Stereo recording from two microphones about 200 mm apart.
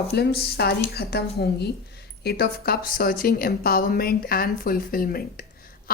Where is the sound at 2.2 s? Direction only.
50° left (ahead or behind).